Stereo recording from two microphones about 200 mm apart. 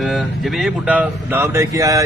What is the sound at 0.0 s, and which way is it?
Speech, centre (ahead or behind).